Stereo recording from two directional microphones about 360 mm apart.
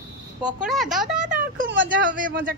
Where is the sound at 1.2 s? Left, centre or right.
Right.